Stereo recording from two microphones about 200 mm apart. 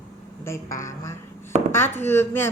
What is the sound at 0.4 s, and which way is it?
A woman's voice, 15° left (ahead or behind).